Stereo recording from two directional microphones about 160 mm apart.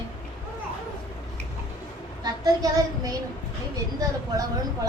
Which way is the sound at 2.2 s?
25° right (ahead or behind).